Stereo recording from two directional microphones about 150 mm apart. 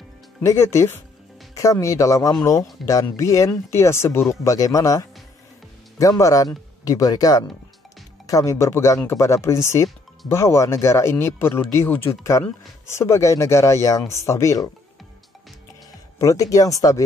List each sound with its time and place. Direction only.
0.4 s speech: 15° left (ahead or behind)
16.2 s speech: 25° left (ahead or behind)